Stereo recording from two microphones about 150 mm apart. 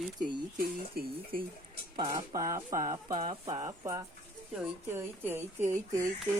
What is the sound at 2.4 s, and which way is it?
Speech, 65° right (ahead or behind).